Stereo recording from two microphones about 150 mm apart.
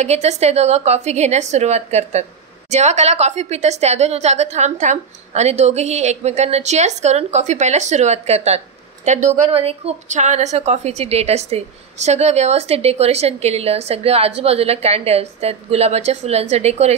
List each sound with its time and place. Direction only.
0.0 s a woman's voice: 45° right (ahead or behind)